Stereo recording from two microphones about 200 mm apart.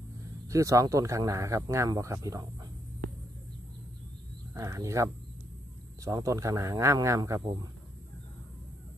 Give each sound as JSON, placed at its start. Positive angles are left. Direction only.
{"t": 0.5, "sound": "speech", "side_deg": -15}
{"t": 4.6, "sound": "speech", "side_deg": -15}